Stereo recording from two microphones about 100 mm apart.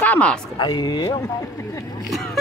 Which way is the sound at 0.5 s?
50° left (ahead or behind).